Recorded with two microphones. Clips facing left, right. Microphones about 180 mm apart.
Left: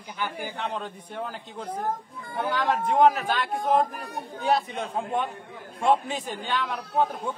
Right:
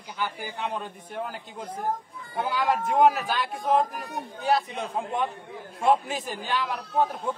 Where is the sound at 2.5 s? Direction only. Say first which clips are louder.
Even; 5° right (ahead or behind).